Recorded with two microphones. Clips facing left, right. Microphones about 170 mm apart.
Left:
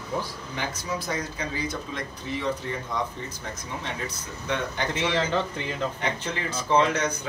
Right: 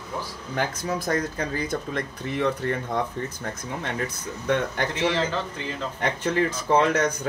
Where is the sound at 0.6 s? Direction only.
50° right (ahead or behind).